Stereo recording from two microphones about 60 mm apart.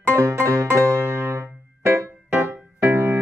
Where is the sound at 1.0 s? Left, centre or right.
Right.